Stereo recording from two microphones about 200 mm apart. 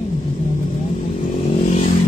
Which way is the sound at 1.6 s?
35° left (ahead or behind).